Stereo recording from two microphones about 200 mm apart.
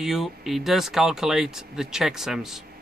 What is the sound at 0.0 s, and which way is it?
Speech, centre (ahead or behind).